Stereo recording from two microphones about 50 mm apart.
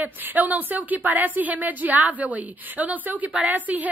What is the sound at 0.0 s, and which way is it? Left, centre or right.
Speech, right.